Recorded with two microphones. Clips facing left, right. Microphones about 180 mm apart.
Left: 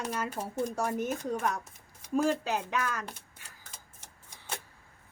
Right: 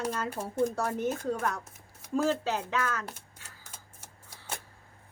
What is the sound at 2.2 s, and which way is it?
Speech, 15° left (ahead or behind).